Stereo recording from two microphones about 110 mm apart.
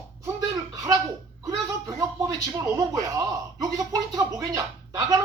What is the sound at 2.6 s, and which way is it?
Speech, 30° right (ahead or behind).